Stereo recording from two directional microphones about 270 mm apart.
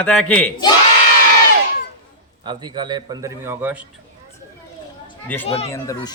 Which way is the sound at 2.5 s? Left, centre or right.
Centre.